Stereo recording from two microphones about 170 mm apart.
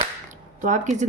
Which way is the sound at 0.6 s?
45° right (ahead or behind).